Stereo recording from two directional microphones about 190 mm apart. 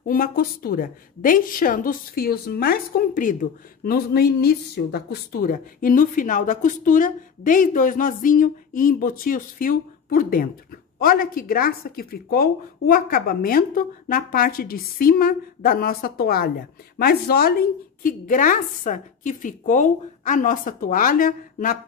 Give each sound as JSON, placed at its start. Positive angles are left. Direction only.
{"t": 0.0, "sound": "a woman's voice", "side_deg": 50}